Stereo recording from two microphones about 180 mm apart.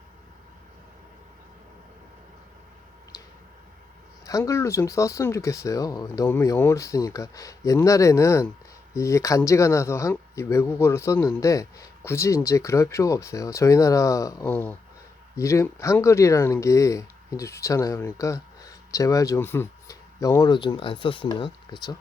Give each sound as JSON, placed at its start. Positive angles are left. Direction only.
{"t": 4.3, "sound": "speech", "side_deg": 15}